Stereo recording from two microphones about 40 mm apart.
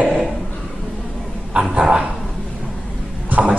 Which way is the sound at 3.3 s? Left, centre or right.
Right.